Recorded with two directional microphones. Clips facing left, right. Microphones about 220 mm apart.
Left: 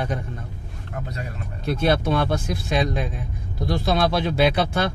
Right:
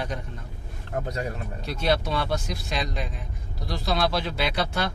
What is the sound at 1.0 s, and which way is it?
Speech, 45° right (ahead or behind).